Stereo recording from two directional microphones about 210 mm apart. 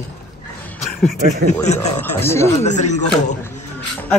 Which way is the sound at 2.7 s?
35° left (ahead or behind).